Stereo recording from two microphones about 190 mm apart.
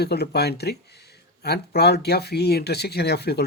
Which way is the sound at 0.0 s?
60° left (ahead or behind).